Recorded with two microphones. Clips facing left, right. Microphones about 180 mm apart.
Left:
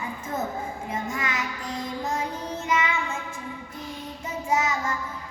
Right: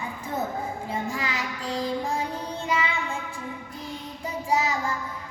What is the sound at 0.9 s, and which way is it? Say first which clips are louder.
Child singing: left 1 dB; 30° right (ahead or behind).